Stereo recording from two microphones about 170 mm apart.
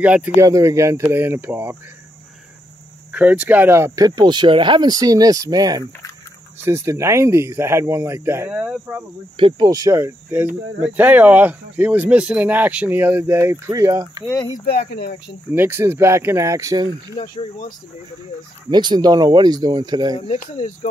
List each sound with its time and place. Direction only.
0.0 s speech: 10° right (ahead or behind)
3.1 s speech: 10° right (ahead or behind)
9.4 s speech: 25° right (ahead or behind)
14.7 s speech: 70° left (ahead or behind)
15.5 s speech: 15° right (ahead or behind)
18.7 s speech: 25° right (ahead or behind)
20.3 s speech: 45° left (ahead or behind)